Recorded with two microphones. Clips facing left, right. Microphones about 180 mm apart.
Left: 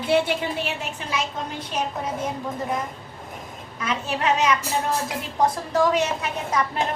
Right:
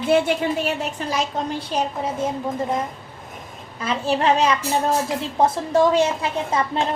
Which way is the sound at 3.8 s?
30° right (ahead or behind).